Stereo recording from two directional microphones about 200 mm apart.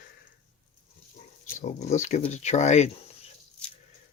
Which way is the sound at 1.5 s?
35° left (ahead or behind).